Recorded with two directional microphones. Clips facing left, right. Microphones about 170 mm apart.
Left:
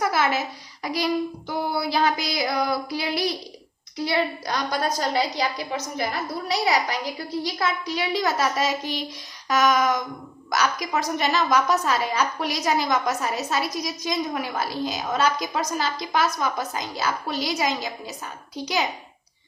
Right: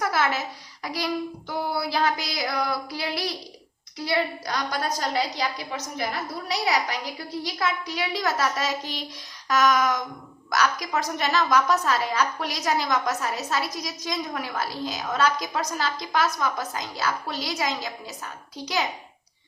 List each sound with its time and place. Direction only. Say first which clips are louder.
0.0 s a woman's voice: left 2 dB; 15° left (ahead or behind)
7.4 s a woman's voice: even; 30° left (ahead or behind)